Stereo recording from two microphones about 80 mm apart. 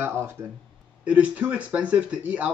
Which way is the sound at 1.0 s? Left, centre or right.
Centre.